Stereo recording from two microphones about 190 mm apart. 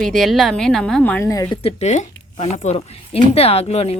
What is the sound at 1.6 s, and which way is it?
A woman's voice, 35° left (ahead or behind).